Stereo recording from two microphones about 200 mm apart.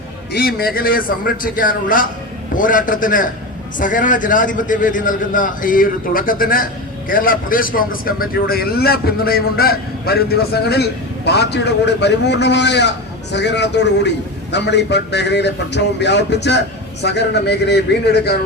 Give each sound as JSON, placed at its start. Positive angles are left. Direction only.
{"t": 0.3, "sound": "a man's voice", "side_deg": 50}